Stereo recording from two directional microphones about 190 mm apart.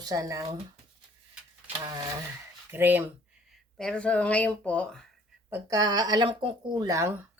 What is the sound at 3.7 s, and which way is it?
Speech, 5° left (ahead or behind).